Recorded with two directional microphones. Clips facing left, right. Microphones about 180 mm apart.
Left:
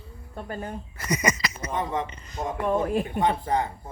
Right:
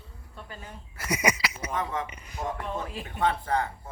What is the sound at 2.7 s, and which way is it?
Speech, 55° left (ahead or behind).